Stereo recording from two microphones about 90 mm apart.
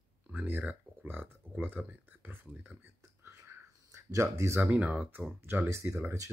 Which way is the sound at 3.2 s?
30° right (ahead or behind).